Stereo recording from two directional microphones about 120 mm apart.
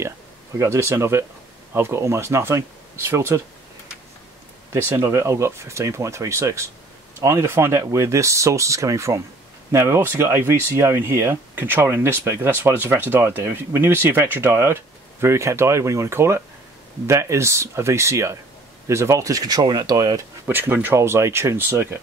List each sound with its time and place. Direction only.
0.6 s speech: 20° right (ahead or behind)
4.8 s speech: 25° right (ahead or behind)
20.4 s speech: 20° right (ahead or behind)